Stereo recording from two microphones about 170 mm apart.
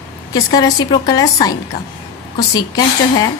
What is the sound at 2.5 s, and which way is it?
Speech, 20° left (ahead or behind).